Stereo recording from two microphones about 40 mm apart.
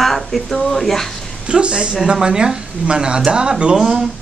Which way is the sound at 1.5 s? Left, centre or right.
Right.